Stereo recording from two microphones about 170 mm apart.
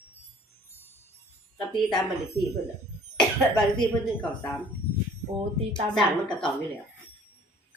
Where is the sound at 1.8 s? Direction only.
Centre (ahead or behind).